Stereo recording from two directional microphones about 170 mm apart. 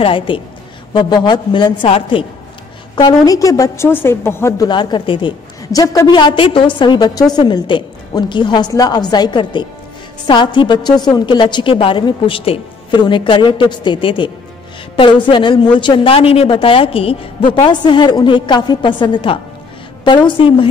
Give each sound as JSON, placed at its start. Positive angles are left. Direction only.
{"t": 0.0, "sound": "a woman's voice", "side_deg": 30}
{"t": 3.0, "sound": "a woman's voice", "side_deg": 20}
{"t": 4.6, "sound": "a woman's voice", "side_deg": 25}